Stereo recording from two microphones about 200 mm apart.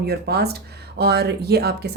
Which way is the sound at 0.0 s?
55° right (ahead or behind).